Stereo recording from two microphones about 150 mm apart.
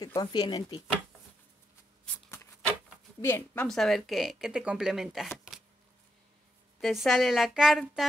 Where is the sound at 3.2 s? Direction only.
15° left (ahead or behind).